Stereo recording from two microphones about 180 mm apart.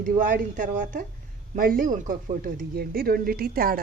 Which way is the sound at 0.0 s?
45° right (ahead or behind).